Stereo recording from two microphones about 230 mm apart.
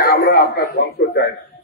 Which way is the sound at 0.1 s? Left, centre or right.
Left.